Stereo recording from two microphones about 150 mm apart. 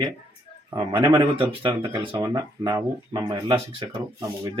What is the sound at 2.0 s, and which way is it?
Speech, 25° right (ahead or behind).